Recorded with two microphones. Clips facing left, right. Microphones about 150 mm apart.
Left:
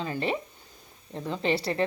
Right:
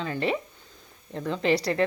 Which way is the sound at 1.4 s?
30° left (ahead or behind).